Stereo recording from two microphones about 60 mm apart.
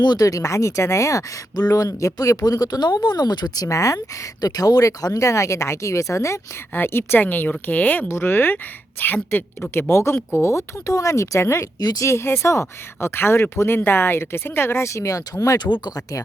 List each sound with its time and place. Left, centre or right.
0.2 s speech: left
6.7 s speech: left
8.0 s speech: left
9.9 s speech: left
11.8 s speech: left
12.0 s speech: left